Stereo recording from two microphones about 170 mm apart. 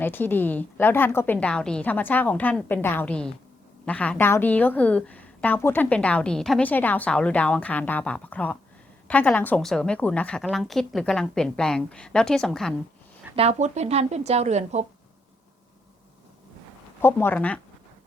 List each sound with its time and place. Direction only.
0.0 s a woman's voice: 10° left (ahead or behind)
13.3 s speech: 40° right (ahead or behind)
17.0 s a woman's voice: 15° left (ahead or behind)